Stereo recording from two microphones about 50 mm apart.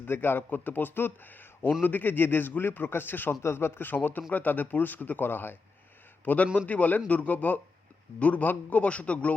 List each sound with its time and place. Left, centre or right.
0.0 s a man's voice: left
3.4 s speech: left
3.8 s speech: left
6.2 s speech: left